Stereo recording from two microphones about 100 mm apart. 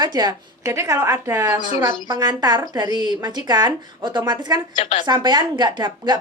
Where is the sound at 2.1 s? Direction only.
45° right (ahead or behind).